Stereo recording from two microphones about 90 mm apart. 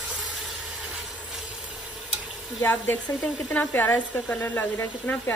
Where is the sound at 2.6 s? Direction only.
25° left (ahead or behind).